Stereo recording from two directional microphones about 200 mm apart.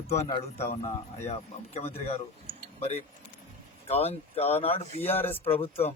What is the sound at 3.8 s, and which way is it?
A man's voice, 30° left (ahead or behind).